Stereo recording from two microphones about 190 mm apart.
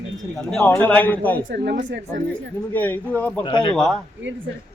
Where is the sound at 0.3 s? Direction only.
5° left (ahead or behind).